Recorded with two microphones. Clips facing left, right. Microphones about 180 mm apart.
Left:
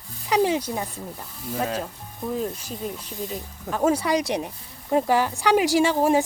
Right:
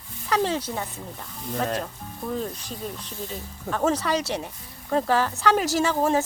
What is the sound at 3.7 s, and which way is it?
Speech, 10° left (ahead or behind).